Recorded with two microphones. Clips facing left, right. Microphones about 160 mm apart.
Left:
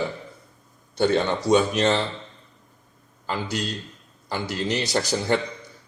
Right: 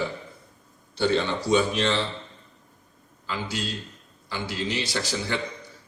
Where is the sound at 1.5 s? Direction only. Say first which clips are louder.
Left 3 dB; 45° left (ahead or behind).